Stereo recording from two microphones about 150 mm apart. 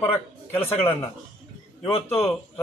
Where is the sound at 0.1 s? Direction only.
15° left (ahead or behind).